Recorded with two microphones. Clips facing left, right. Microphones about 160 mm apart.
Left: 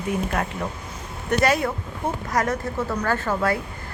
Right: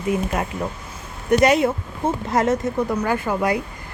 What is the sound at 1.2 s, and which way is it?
A woman's voice, 20° right (ahead or behind).